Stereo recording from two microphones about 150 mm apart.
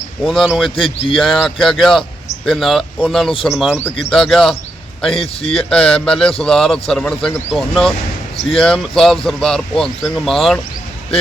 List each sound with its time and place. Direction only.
0.3 s speech: centre (ahead or behind)
0.8 s speech: 35° left (ahead or behind)
1.1 s speech: centre (ahead or behind)
5.1 s speech: 40° left (ahead or behind)
5.5 s speech: 5° left (ahead or behind)